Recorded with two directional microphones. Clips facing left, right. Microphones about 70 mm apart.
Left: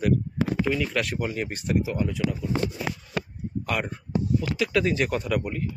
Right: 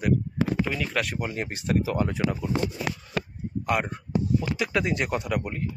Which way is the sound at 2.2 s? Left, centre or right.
Right.